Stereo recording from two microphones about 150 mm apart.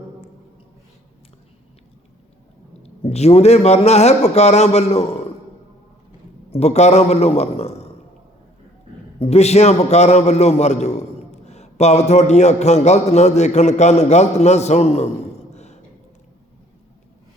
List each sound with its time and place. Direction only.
2.8 s a man's voice: 45° left (ahead or behind)
6.5 s a man's voice: 45° left (ahead or behind)
9.1 s a man's voice: 45° left (ahead or behind)
15.5 s a sound: 50° left (ahead or behind)